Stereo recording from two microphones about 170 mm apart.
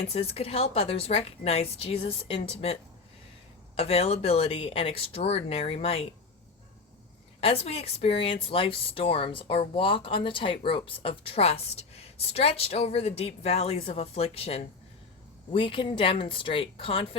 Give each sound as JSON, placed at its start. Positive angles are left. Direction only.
{"t": 0.0, "sound": "speech", "side_deg": 35}
{"t": 3.8, "sound": "speech", "side_deg": 35}
{"t": 7.4, "sound": "speech", "side_deg": 35}